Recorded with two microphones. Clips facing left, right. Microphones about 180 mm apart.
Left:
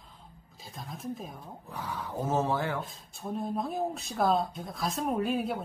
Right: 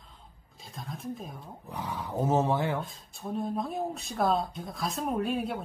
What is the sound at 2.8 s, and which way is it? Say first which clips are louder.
Speech: even; centre (ahead or behind).